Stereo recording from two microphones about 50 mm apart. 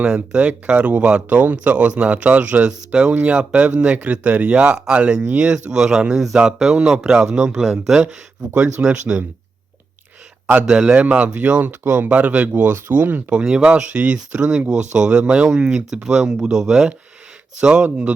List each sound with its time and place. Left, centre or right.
0.3 s speech: right; by 8.0 s centre
8.5 s speech: centre
10.7 s speech: centre; by 13.2 s right
13.3 s speech: centre